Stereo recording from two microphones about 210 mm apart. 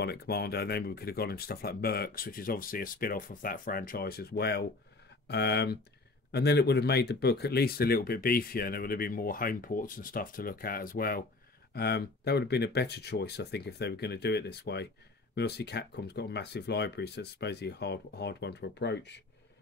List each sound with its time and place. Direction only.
0.0 s speech: 50° left (ahead or behind)